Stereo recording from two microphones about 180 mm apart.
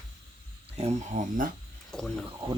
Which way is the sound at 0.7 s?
35° right (ahead or behind).